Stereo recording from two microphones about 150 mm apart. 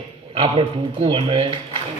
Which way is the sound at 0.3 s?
35° right (ahead or behind).